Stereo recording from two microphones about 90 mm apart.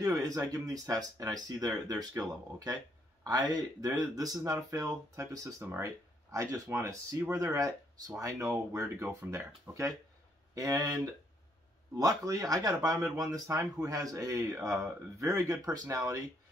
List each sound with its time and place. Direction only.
0.0 s speech: 40° right (ahead or behind)
12.0 s speech: 40° right (ahead or behind)